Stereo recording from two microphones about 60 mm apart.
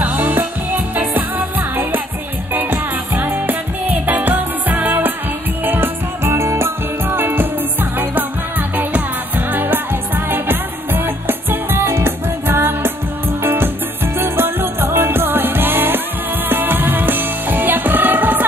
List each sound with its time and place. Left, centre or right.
0.0 s music: right
2.5 s music: right
5.7 s music: right